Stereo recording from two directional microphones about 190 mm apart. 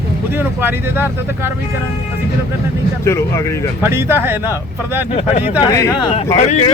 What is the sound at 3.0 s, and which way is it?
Speech, 15° left (ahead or behind).